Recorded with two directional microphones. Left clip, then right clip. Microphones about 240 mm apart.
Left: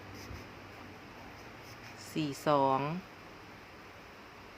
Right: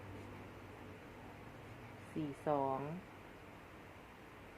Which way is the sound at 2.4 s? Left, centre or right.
Left.